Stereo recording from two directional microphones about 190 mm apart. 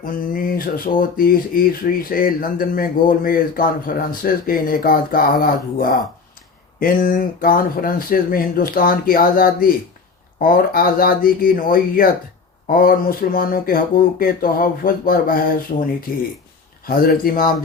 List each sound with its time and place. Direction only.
0.0 s speech: 50° left (ahead or behind)